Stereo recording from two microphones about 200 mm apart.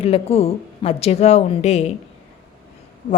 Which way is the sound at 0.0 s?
30° left (ahead or behind).